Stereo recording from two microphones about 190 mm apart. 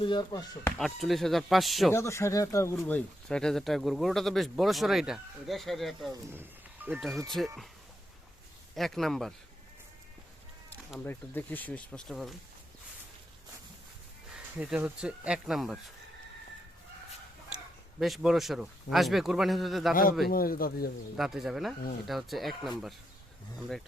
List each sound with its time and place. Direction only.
0.0 s speech: 25° left (ahead or behind)
0.8 s speech: centre (ahead or behind)
1.9 s speech: 15° left (ahead or behind)
6.3 s speech: 10° right (ahead or behind)
8.7 s speech: centre (ahead or behind)
11.0 s speech: 10° left (ahead or behind)
14.6 s speech: 10° right (ahead or behind)
18.0 s speech: centre (ahead or behind)
19.9 s speech: 50° left (ahead or behind)
21.2 s speech: centre (ahead or behind)